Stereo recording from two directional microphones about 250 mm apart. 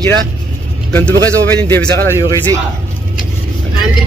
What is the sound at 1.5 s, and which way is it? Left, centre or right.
Speech, centre.